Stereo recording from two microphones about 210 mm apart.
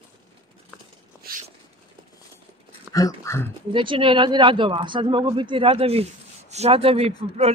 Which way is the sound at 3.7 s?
25° right (ahead or behind).